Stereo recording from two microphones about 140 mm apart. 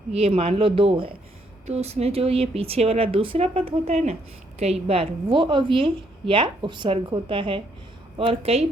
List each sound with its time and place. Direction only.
0.1 s a woman's voice: 45° right (ahead or behind)